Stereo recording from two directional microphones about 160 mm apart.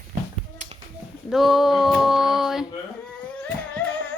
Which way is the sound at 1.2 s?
Centre (ahead or behind).